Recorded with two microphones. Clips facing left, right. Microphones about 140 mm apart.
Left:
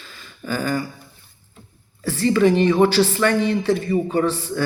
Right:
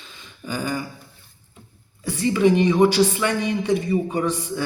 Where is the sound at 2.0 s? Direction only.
15° right (ahead or behind).